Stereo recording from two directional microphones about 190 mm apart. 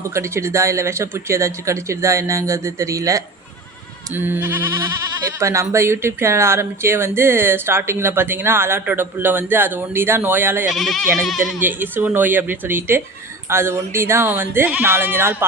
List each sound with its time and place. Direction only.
0.1 s speech: 15° right (ahead or behind)
10.7 s speech: centre (ahead or behind)